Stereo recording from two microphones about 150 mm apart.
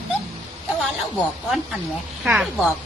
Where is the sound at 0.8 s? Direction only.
Centre (ahead or behind).